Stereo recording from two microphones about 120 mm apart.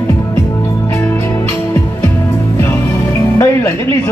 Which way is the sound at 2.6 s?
25° left (ahead or behind).